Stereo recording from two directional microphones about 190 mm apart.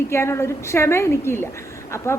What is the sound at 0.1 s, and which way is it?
A woman's voice, 15° left (ahead or behind).